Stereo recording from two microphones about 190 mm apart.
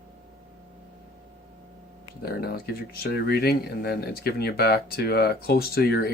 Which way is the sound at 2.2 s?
55° left (ahead or behind).